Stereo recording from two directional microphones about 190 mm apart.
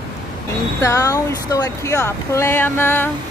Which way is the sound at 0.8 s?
15° left (ahead or behind).